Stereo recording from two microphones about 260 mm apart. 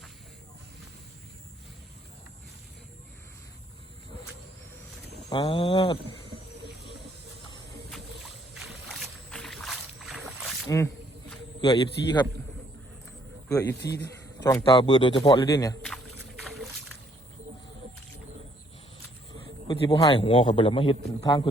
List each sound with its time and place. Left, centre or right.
5.3 s a sound: centre
7.9 s boat: centre
10.7 s a man's voice: centre
13.5 s a man's voice: centre
16.4 s boat: centre
19.3 s a man's voice: centre